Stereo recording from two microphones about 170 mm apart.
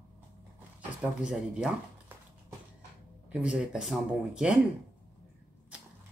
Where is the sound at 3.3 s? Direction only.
5° right (ahead or behind).